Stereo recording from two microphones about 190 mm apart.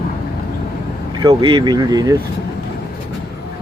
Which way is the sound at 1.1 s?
20° right (ahead or behind).